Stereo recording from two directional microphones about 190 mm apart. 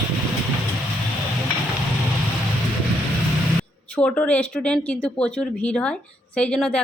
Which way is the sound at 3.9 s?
10° left (ahead or behind).